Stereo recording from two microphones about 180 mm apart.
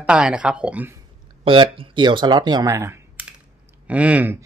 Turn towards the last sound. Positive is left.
turn(degrees=-10)  # may be behind; listen again after turning